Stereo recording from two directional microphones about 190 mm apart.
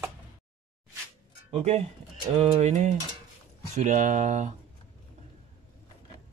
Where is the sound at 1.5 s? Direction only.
35° right (ahead or behind).